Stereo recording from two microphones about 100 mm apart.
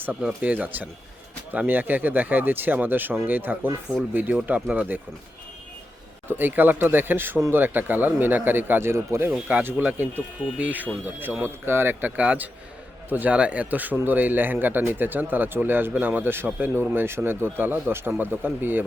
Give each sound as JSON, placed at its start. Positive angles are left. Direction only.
{"t": 0.0, "sound": "a man's voice", "side_deg": -10}
{"t": 6.2, "sound": "a man's voice", "side_deg": -20}
{"t": 9.3, "sound": "a man's voice", "side_deg": -15}